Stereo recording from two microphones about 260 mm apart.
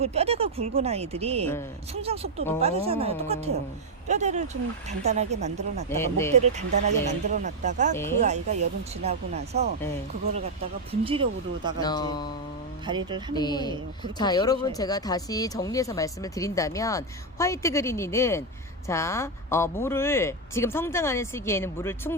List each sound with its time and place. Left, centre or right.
0.0 s speech: right
5.9 s speech: centre
6.3 s speech: right
11.0 s speech: right
11.8 s speech: centre
12.8 s speech: centre
13.3 s speech: centre